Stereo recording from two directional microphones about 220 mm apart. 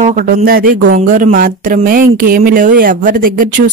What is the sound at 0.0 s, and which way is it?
A woman's voice, 35° right (ahead or behind).